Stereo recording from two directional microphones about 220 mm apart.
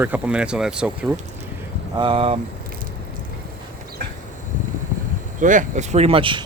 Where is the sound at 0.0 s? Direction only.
5° right (ahead or behind).